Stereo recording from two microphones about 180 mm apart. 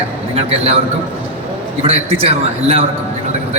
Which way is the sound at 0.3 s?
35° right (ahead or behind).